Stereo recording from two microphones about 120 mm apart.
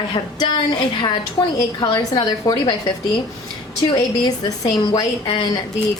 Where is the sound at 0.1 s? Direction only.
40° left (ahead or behind).